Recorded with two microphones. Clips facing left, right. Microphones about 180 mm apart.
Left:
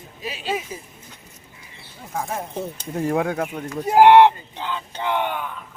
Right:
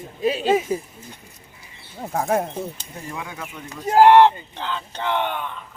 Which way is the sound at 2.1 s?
60° right (ahead or behind).